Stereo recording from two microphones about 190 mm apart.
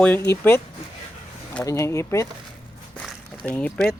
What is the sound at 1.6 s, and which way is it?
Speech, 15° left (ahead or behind).